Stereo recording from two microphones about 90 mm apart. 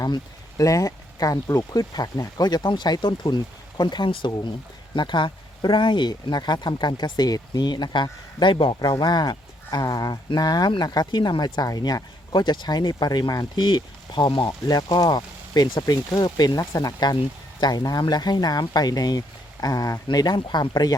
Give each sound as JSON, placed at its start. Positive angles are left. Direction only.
{"t": 0.0, "sound": "speech", "side_deg": 40}